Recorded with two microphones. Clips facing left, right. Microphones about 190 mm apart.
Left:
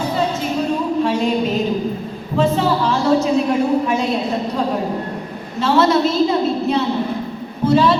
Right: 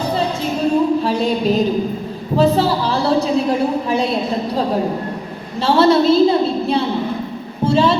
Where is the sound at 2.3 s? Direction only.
35° right (ahead or behind).